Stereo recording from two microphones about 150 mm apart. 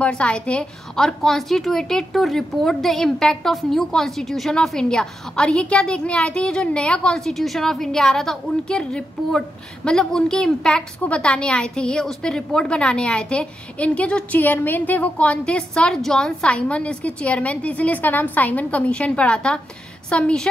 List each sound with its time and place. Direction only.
0.0 s a woman's voice: 5° left (ahead or behind)